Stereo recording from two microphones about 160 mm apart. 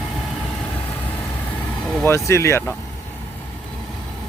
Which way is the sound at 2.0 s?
15° left (ahead or behind).